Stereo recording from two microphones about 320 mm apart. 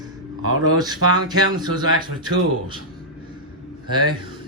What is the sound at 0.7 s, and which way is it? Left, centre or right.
Speech, centre.